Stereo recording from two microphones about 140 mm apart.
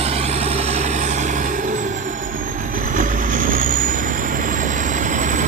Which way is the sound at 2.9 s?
75° right (ahead or behind).